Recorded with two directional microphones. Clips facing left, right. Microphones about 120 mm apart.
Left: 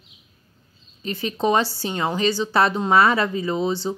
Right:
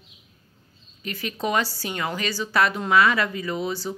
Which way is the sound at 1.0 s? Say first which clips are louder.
Left 5 dB; 30° left (ahead or behind).